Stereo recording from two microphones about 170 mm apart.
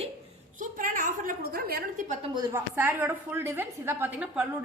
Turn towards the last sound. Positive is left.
turn(degrees=-10)  # may be behind; listen again after turning